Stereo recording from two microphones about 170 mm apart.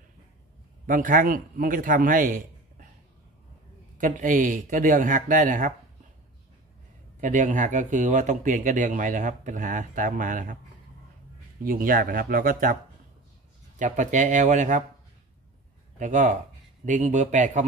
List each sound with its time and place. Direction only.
0.8 s a man's voice: 55° right (ahead or behind)
4.0 s speech: 50° right (ahead or behind)
7.2 s speech: 45° right (ahead or behind)
11.6 s speech: 55° right (ahead or behind)
13.7 s speech: 45° right (ahead or behind)
16.0 s speech: 45° right (ahead or behind)